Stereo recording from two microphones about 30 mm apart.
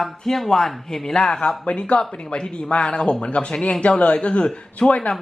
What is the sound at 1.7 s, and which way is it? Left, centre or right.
Speech, left.